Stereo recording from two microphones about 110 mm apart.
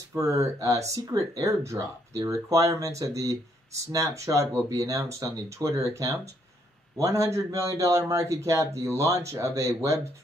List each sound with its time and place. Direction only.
0.1 s speech: 25° right (ahead or behind)